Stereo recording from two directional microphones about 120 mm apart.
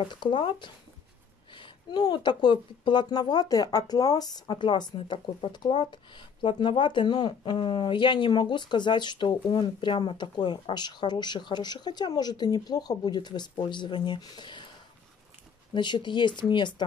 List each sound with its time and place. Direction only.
0.0 s speech: 40° left (ahead or behind)
15.7 s speech: 40° left (ahead or behind)